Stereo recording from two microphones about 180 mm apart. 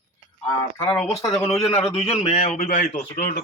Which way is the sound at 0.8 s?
15° left (ahead or behind).